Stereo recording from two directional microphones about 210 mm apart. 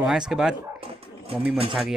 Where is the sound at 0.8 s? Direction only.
25° right (ahead or behind).